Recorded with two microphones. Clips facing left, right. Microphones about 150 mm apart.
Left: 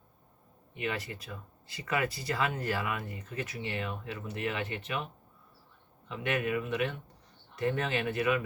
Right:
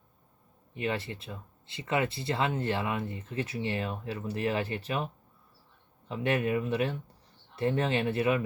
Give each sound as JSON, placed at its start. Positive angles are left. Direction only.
{"t": 0.7, "sound": "speech", "side_deg": -30}
{"t": 6.1, "sound": "speech", "side_deg": -30}